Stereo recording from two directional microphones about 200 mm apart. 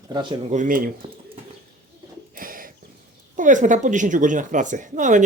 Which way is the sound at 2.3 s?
45° right (ahead or behind).